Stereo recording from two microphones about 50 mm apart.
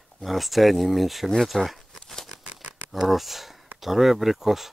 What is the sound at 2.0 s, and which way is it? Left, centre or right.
Tearing, centre.